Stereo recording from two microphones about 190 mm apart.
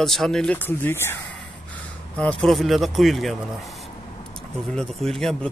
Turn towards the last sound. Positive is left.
turn(degrees=0)  # may be behind; listen again after turning